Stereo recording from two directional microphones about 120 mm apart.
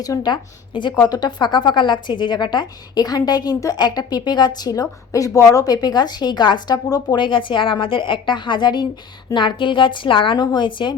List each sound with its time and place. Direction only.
0.0 s a woman's voice: 35° left (ahead or behind)